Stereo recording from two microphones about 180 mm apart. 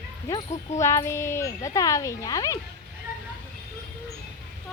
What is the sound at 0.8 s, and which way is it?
Speech, 15° left (ahead or behind).